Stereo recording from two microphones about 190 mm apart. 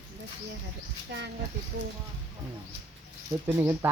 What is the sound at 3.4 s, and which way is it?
Speech, 15° right (ahead or behind).